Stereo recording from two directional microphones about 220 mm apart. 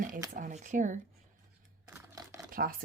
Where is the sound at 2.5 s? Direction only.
40° right (ahead or behind).